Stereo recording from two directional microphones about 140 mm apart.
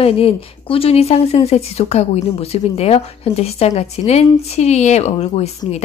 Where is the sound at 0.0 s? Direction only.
45° left (ahead or behind).